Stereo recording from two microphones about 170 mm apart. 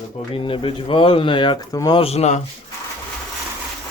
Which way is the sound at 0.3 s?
30° left (ahead or behind).